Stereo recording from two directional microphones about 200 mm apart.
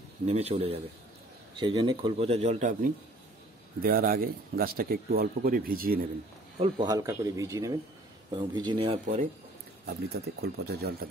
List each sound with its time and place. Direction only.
0.3 s a man's voice: 30° right (ahead or behind)
3.8 s a man's voice: 45° right (ahead or behind)
6.6 s speech: 20° right (ahead or behind)
9.8 s a man's voice: 50° right (ahead or behind)